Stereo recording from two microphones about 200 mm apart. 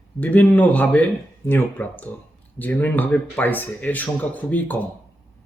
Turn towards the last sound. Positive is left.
turn(degrees=10)  # may be behind; listen again after turning